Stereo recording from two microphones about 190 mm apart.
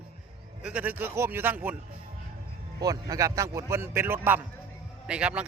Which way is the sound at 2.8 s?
20° right (ahead or behind).